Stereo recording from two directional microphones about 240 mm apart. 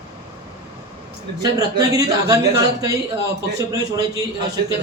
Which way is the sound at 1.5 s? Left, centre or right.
Centre.